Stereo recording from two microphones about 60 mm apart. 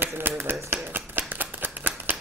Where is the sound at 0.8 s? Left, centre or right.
Right.